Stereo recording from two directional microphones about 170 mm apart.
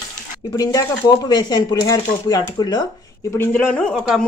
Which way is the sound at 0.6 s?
25° left (ahead or behind).